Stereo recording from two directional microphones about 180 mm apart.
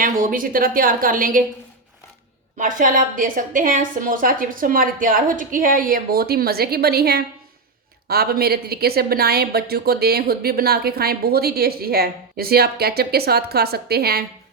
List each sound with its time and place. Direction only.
0.0 s a woman's voice: 50° right (ahead or behind)
2.6 s a woman's voice: 45° right (ahead or behind)